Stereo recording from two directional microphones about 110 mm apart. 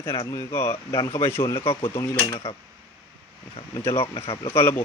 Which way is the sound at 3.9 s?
55° left (ahead or behind).